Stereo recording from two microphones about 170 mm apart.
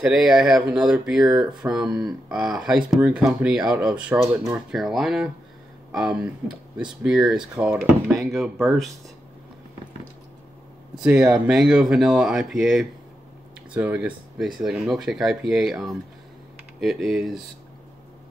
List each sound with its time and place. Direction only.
0.0 s speech: 5° right (ahead or behind)
1.3 s speech: 25° right (ahead or behind)
1.6 s speech: 5° right (ahead or behind)
5.9 s a sound: 5° right (ahead or behind)
6.8 s speech: 5° right (ahead or behind)
11.3 s speech: 5° right (ahead or behind)